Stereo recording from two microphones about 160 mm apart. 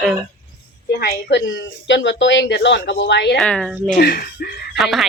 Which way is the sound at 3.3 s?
5° left (ahead or behind).